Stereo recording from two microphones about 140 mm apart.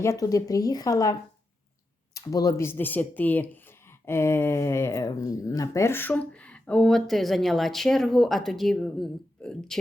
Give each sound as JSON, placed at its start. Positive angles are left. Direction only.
{"t": 0.0, "sound": "speech", "side_deg": 25}
{"t": 2.1, "sound": "speech", "side_deg": 25}